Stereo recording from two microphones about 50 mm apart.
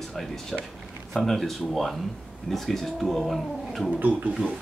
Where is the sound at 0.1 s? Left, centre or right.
Centre.